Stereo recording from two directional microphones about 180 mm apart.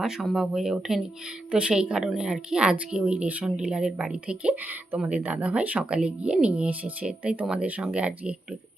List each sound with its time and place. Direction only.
0.0 s speech: centre (ahead or behind)